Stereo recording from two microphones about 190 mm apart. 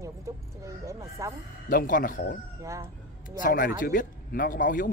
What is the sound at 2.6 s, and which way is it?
Speech, 15° right (ahead or behind).